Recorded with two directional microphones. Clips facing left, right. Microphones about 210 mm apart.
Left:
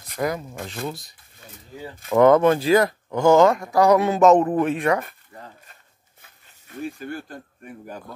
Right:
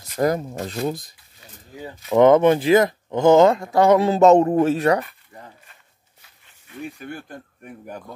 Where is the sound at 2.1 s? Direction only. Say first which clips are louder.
Right 1 dB; 20° right (ahead or behind); by 5.0 s 35° right (ahead or behind).